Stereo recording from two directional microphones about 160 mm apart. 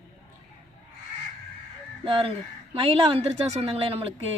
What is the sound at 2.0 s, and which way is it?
A woman's voice, 35° right (ahead or behind).